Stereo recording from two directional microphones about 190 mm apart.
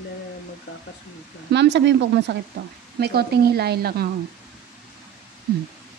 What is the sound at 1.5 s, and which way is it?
Speech, 65° right (ahead or behind).